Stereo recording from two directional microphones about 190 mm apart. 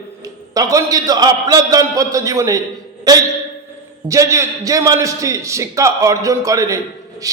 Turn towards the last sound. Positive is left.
turn(degrees=-15)  # may be behind; listen again after turning